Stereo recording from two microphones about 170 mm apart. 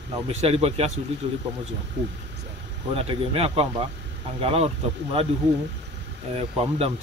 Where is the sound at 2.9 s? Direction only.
35° right (ahead or behind).